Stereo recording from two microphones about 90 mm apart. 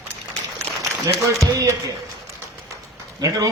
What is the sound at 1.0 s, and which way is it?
Speech, 35° right (ahead or behind).